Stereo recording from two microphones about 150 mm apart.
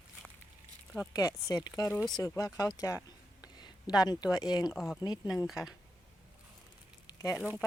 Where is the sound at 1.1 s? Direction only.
25° left (ahead or behind).